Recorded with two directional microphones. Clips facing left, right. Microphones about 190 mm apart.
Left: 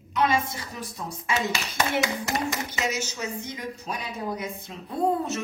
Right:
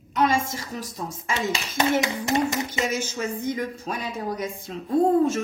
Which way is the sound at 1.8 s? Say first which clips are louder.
Right 4 dB; 25° right (ahead or behind).